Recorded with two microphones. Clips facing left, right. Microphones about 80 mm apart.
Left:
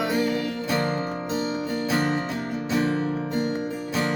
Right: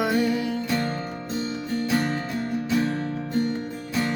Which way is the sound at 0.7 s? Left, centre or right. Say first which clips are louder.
Left 3 dB; centre.